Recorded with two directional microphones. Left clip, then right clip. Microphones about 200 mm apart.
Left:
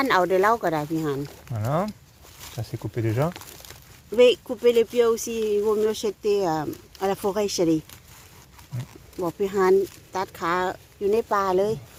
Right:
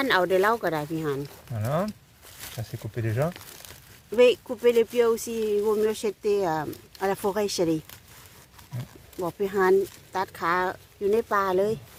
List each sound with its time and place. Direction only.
0.0 s speech: centre (ahead or behind)
1.5 s speech: 20° left (ahead or behind)
4.1 s speech: centre (ahead or behind)
9.1 s speech: centre (ahead or behind)